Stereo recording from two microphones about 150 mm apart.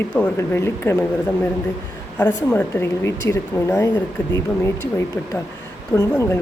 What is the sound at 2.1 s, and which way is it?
Speech, 10° left (ahead or behind).